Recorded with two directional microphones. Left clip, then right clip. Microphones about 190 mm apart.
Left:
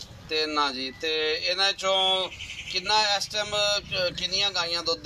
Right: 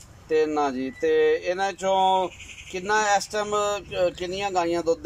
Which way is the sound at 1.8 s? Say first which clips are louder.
Right 3 dB; 35° right (ahead or behind).